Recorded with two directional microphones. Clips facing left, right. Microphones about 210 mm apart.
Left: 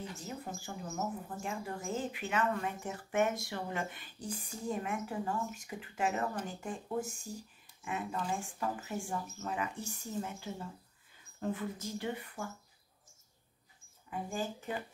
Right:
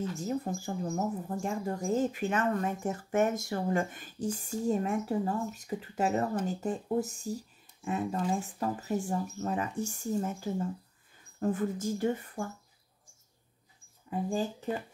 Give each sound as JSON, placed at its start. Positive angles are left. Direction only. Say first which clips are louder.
{"t": 0.2, "sound": "speech", "louder": "right 10 dB", "side_deg": -40}